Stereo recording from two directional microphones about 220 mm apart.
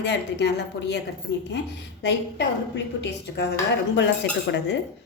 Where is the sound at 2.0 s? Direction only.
50° left (ahead or behind).